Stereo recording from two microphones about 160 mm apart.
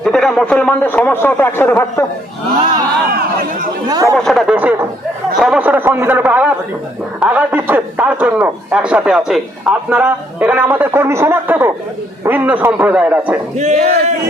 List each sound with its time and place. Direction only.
0.0 s speech: centre (ahead or behind)
3.1 s chatter: 70° right (ahead or behind)
3.8 s speech: 25° right (ahead or behind)
4.1 s a sound: 5° left (ahead or behind)
5.4 s a man's voice: 5° right (ahead or behind)
13.6 s speech: 45° right (ahead or behind)